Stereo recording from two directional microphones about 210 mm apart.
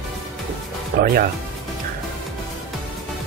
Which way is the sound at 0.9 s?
45° right (ahead or behind).